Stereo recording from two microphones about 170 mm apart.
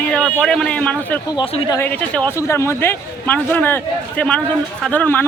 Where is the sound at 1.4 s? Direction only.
25° left (ahead or behind).